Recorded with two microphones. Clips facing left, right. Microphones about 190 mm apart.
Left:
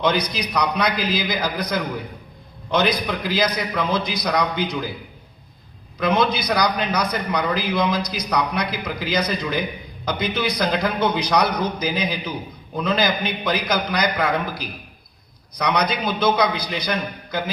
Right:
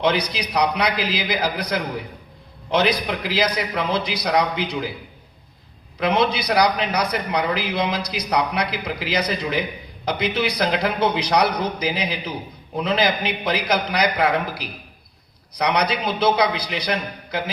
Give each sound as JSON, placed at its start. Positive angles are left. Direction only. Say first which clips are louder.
{"t": 0.0, "sound": "a man's voice", "louder": "even", "side_deg": -30}
{"t": 3.3, "sound": "a man's voice", "louder": "even", "side_deg": -30}
{"t": 6.1, "sound": "a man's voice", "louder": "even", "side_deg": -30}